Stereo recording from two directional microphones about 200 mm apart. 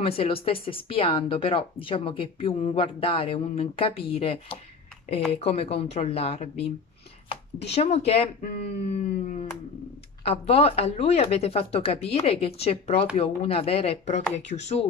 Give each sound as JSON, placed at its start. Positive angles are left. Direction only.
{"t": 0.0, "sound": "speech", "side_deg": 30}